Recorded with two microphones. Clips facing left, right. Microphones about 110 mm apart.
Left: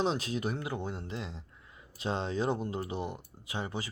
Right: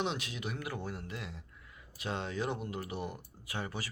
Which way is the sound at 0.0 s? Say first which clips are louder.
Left 5 dB; 35° left (ahead or behind).